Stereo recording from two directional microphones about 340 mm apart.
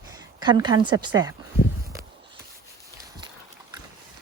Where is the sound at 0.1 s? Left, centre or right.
Centre.